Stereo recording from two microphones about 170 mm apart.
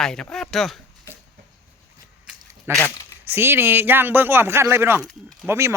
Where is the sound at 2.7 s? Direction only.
15° right (ahead or behind).